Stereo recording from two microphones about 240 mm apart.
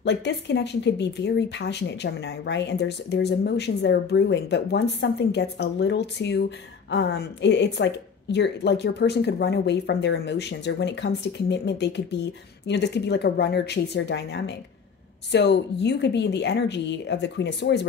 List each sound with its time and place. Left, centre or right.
0.0 s a woman's voice: left